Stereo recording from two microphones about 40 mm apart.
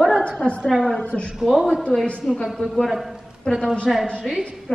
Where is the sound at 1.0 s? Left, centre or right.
Left.